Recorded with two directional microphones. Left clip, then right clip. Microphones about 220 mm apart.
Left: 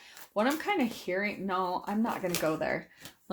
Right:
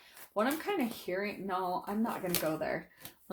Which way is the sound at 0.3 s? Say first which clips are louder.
Left 4 dB; 35° left (ahead or behind).